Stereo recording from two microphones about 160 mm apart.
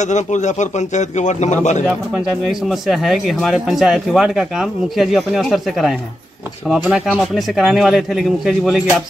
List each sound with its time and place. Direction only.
0.0 s a man's voice: 45° left (ahead or behind)
2.4 s speech: centre (ahead or behind)